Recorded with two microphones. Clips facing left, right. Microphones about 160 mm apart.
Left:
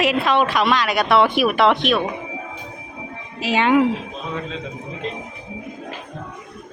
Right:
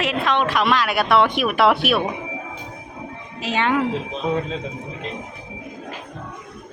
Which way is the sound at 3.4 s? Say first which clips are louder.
Left 4 dB; 5° left (ahead or behind).